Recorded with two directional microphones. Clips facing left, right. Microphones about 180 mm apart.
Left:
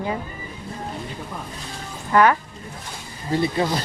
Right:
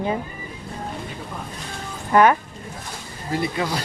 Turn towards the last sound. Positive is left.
turn(degrees=35)  # may be behind; listen again after turning